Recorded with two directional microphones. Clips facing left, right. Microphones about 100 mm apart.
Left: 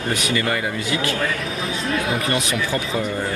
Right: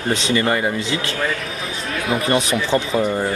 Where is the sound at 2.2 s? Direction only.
30° right (ahead or behind).